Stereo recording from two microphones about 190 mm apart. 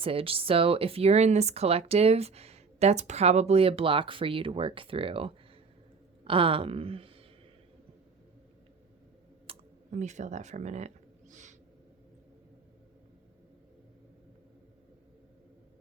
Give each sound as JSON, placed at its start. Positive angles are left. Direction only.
{"t": 0.0, "sound": "a woman's voice", "side_deg": -30}
{"t": 9.5, "sound": "clicking", "side_deg": -30}
{"t": 9.9, "sound": "speech", "side_deg": -40}